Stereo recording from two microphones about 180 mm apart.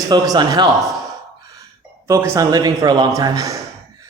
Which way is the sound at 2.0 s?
15° right (ahead or behind).